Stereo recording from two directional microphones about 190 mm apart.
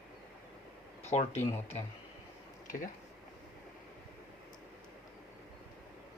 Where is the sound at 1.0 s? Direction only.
35° left (ahead or behind).